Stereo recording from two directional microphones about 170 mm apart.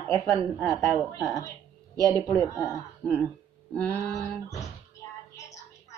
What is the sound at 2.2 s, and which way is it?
Speech, 10° left (ahead or behind).